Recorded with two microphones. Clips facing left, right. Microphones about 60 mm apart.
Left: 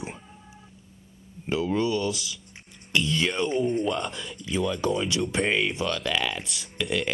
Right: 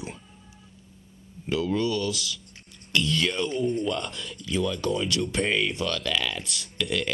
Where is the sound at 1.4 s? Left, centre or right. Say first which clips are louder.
Even; left.